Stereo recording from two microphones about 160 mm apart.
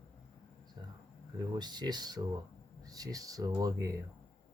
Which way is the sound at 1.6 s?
25° right (ahead or behind).